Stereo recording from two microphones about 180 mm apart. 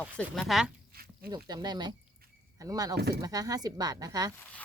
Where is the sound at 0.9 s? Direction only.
55° right (ahead or behind).